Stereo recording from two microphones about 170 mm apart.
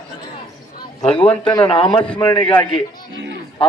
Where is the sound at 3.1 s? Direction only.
90° right.